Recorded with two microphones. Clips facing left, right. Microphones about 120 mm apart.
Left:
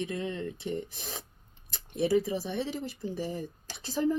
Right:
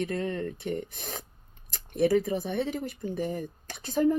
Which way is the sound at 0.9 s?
60° right (ahead or behind).